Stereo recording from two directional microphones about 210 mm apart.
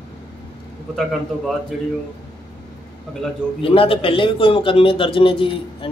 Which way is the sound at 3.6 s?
25° left (ahead or behind).